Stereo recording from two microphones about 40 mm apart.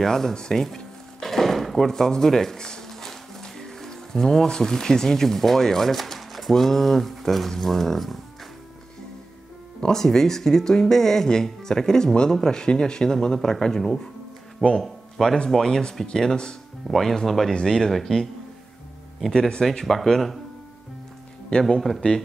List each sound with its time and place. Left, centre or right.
0.0 s speech: centre
1.2 s a sound: centre
2.9 s music: centre
4.5 s speech: centre
9.8 s speech: centre
19.6 s speech: centre
21.5 s speech: centre